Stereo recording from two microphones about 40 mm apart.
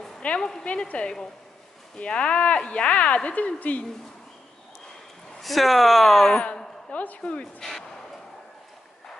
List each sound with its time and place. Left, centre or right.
0.4 s speech: centre
0.8 s speech: left
5.4 s speech: centre
6.9 s speech: left